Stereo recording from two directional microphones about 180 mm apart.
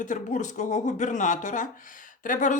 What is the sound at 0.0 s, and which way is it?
Speech, 45° left (ahead or behind).